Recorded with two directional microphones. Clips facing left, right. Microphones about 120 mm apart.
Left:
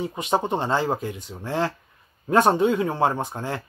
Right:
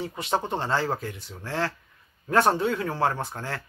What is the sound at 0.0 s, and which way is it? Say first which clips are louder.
Speech: left 4 dB; 15° left (ahead or behind).